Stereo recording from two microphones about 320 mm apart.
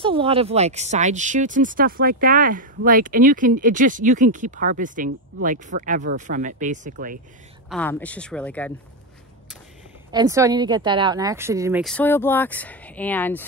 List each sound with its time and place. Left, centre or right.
0.0 s speech: centre
7.7 s speech: centre
10.1 s speech: centre